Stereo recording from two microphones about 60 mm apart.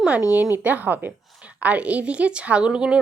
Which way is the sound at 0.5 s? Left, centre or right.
Right.